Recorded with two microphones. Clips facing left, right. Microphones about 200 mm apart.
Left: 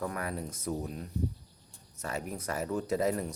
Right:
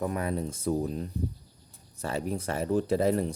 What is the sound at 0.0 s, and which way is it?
Speech, 20° right (ahead or behind).